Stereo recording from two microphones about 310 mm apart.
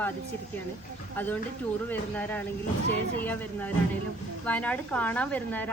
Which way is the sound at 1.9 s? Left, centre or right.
Centre.